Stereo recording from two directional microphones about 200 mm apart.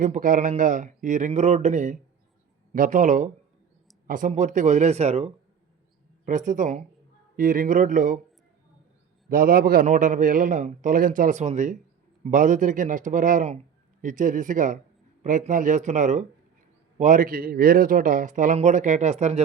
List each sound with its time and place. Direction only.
0.0 s a man's voice: 40° right (ahead or behind)
9.3 s a man's voice: 45° right (ahead or behind)